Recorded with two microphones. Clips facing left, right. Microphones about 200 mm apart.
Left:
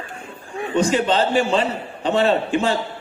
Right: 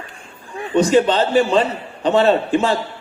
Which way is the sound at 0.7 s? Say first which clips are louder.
Right 4 dB; 40° right (ahead or behind).